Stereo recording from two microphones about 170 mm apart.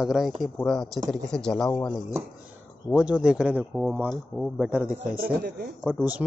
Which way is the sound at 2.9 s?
5° right (ahead or behind).